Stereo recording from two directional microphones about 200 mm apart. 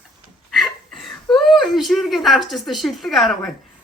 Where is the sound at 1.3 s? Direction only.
Centre (ahead or behind).